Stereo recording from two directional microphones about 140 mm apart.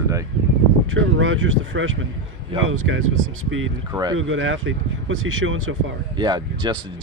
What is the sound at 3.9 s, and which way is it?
Speech, 5° right (ahead or behind).